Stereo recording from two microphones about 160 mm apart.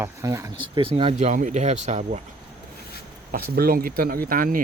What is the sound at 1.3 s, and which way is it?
Speech, 50° right (ahead or behind).